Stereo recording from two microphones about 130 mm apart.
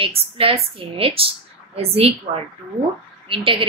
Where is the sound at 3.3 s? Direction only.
40° right (ahead or behind).